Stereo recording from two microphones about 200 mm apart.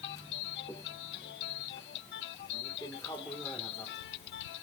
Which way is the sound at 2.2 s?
70° left (ahead or behind).